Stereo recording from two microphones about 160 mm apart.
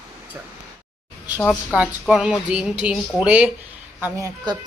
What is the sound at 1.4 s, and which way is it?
A woman's voice, 5° right (ahead or behind).